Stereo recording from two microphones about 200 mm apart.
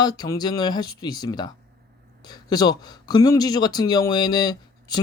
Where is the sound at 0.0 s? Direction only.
20° left (ahead or behind).